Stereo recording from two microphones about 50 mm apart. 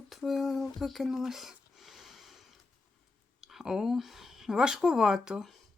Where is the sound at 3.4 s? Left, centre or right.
Centre.